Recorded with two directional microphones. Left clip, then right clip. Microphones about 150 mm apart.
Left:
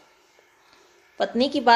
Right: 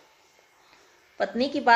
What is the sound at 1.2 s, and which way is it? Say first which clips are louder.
Speech: left 3 dB; 25° left (ahead or behind).